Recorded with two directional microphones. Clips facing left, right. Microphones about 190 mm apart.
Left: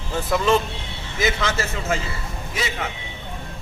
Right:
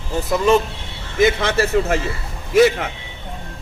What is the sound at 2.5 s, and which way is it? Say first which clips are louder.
Speech: right 15 dB; 55° right (ahead or behind).